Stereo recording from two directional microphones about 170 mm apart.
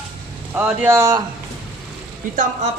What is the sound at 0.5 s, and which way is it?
Speech, 10° right (ahead or behind).